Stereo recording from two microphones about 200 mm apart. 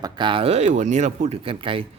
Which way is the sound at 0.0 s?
25° right (ahead or behind).